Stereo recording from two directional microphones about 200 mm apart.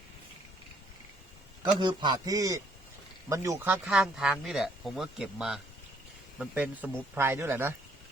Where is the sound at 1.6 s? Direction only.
20° right (ahead or behind).